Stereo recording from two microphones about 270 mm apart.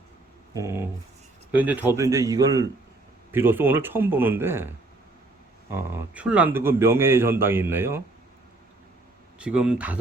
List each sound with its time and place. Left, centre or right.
0.5 s a man's voice: centre
5.7 s a man's voice: centre
9.4 s speech: centre